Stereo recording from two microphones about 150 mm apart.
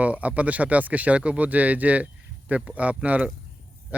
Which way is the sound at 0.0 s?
10° right (ahead or behind).